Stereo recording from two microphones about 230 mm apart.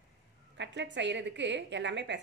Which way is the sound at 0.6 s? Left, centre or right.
Right.